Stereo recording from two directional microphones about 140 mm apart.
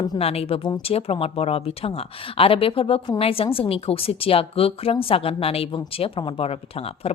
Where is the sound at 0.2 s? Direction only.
45° left (ahead or behind).